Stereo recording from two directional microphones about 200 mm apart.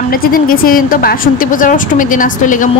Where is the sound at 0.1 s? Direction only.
45° left (ahead or behind).